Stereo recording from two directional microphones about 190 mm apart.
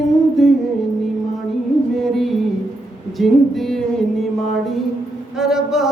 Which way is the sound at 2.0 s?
Centre (ahead or behind).